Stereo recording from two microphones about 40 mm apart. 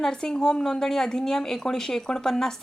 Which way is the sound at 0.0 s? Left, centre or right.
Centre.